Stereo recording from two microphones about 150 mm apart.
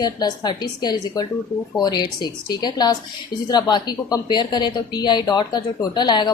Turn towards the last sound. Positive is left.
turn(degrees=30)  # may be behind; listen again after turning